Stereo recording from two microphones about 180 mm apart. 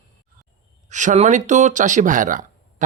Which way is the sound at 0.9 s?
40° right (ahead or behind).